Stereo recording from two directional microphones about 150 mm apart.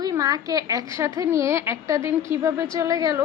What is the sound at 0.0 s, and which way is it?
A woman's voice, 25° right (ahead or behind).